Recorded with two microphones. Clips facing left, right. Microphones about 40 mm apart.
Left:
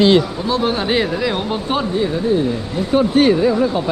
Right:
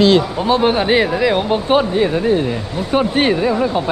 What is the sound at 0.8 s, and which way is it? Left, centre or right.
Speech, centre.